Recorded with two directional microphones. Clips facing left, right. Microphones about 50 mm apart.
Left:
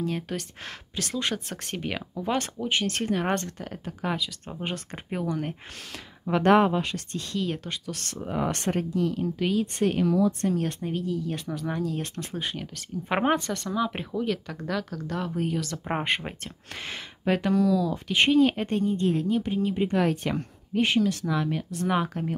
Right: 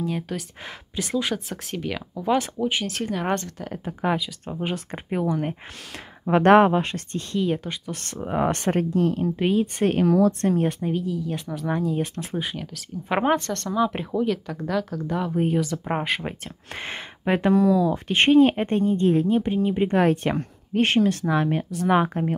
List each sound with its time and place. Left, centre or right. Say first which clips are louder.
0.0 s speech: right 2 dB; centre
1.8 s speech: right 2 dB; centre
2.1 s speech: right 6 dB; centre
3.8 s speech: right 5 dB; centre
6.2 s speech: right 5 dB; right
7.4 s speech: right 5 dB; centre
7.9 s speech: right 5 dB; right
9.9 s speech: right 6 dB; right
10.7 s speech: right 3 dB; centre
11.7 s speech: right 7 dB; centre
12.4 s speech: right 3 dB; centre
16.7 s speech: right 4 dB; right
17.9 s speech: right 4 dB; right
20.0 s speech: right 5 dB; right